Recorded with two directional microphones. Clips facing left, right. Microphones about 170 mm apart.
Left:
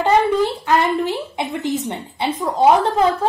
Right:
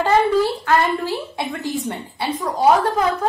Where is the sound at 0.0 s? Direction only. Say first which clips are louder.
Even; 20° left (ahead or behind).